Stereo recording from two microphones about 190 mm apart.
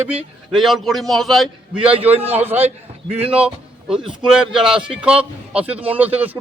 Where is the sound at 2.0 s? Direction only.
30° right (ahead or behind).